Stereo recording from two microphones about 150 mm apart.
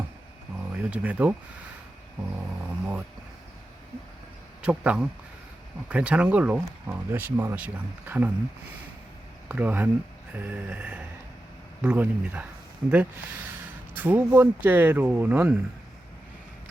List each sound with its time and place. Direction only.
0.7 s speech: 10° right (ahead or behind)
4.6 s speech: 5° right (ahead or behind)
9.5 s speech: 10° right (ahead or behind)